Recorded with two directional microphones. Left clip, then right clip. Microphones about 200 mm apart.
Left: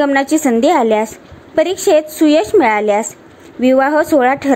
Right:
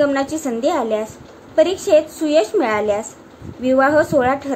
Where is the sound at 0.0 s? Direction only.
35° left (ahead or behind).